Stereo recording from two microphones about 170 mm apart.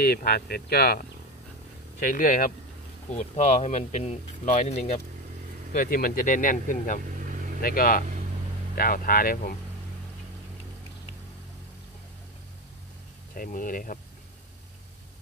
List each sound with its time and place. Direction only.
0.0 s speech: 60° left (ahead or behind)
2.0 s speech: 55° left (ahead or behind)
5.7 s speech: 55° left (ahead or behind)
13.3 s speech: 55° left (ahead or behind)